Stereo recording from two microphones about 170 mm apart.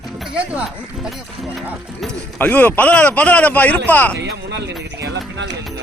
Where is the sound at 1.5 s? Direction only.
Centre (ahead or behind).